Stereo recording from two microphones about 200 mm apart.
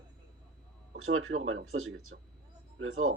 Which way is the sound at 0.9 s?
90° right.